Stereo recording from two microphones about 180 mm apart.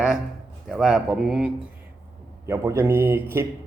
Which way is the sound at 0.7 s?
5° right (ahead or behind).